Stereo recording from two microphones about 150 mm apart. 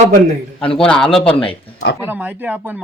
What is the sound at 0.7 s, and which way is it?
Speech, 5° left (ahead or behind).